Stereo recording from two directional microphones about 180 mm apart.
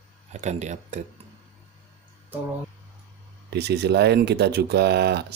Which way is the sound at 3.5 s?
65° right (ahead or behind).